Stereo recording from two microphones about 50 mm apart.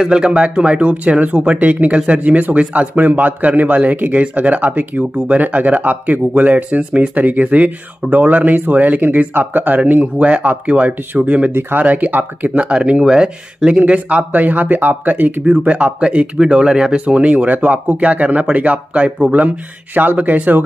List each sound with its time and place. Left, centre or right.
0.0 s speech: centre; by 12.4 s right
12.4 s speech: right
16.9 s speech: right